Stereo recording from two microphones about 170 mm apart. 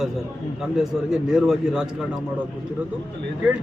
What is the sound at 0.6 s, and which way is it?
A man's voice, centre (ahead or behind).